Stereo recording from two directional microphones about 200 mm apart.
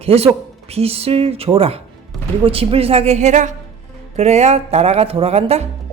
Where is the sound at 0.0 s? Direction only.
30° right (ahead or behind).